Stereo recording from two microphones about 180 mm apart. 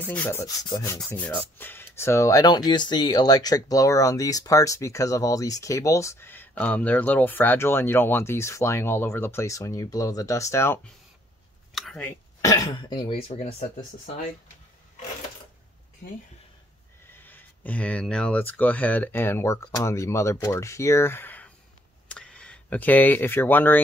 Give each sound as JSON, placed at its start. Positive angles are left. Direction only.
{"t": 0.1, "sound": "speech", "side_deg": 10}
{"t": 0.7, "sound": "speech", "side_deg": 20}
{"t": 0.9, "sound": "speech", "side_deg": 5}
{"t": 11.7, "sound": "a sound", "side_deg": 0}
{"t": 12.0, "sound": "speech", "side_deg": 20}
{"t": 13.4, "sound": "speech", "side_deg": 40}
{"t": 17.2, "sound": "speech", "side_deg": 10}